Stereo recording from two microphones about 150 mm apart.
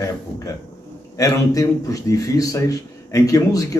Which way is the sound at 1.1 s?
25° left (ahead or behind).